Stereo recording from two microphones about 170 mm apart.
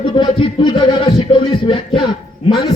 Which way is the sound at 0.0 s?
30° left (ahead or behind).